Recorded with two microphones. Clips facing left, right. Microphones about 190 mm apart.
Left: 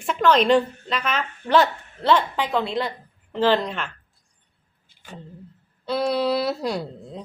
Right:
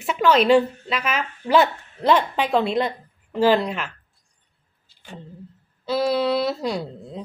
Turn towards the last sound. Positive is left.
turn(degrees=0)  # may be behind; listen again after turning